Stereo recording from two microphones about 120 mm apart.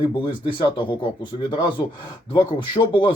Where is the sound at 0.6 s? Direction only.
40° left (ahead or behind).